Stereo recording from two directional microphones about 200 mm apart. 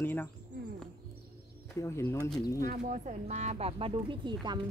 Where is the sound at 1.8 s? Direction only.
15° left (ahead or behind).